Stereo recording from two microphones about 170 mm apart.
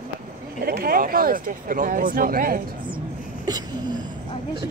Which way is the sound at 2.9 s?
25° right (ahead or behind).